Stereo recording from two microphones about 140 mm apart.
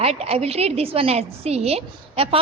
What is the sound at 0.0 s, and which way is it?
A woman's voice, 50° right (ahead or behind).